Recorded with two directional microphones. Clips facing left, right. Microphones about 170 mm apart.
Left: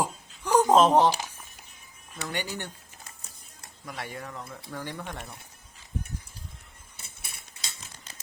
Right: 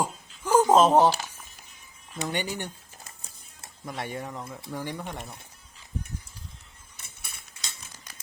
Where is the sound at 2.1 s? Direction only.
20° right (ahead or behind).